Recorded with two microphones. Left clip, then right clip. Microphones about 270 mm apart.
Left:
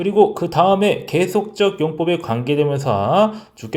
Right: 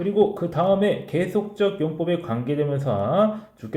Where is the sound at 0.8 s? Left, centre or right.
Left.